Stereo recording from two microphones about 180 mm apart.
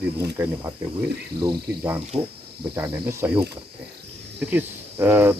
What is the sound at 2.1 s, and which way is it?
Speech, 30° right (ahead or behind).